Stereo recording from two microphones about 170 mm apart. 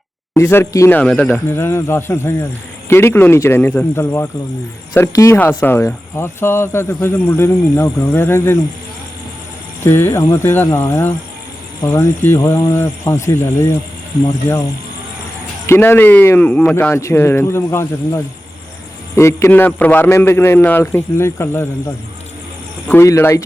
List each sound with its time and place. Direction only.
0.3 s speech: 15° left (ahead or behind)
9.8 s speech: 15° left (ahead or behind)
15.6 s speech: 15° left (ahead or behind)